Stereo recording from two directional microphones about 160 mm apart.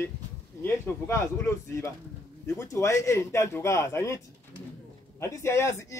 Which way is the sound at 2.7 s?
20° left (ahead or behind).